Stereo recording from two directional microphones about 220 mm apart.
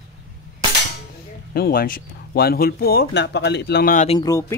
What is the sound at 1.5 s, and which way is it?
Speech, 45° left (ahead or behind).